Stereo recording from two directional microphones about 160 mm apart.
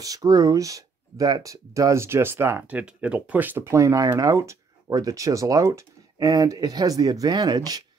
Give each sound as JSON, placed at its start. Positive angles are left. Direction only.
{"t": 0.0, "sound": "speech", "side_deg": -20}